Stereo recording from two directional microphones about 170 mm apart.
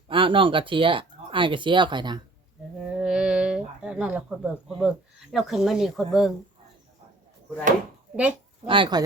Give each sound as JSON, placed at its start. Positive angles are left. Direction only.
{"t": 0.1, "sound": "speech", "side_deg": -30}
{"t": 2.9, "sound": "a sound", "side_deg": -5}
{"t": 5.3, "sound": "speech", "side_deg": 0}
{"t": 8.1, "sound": "speech", "side_deg": -10}
{"t": 8.6, "sound": "speech", "side_deg": -30}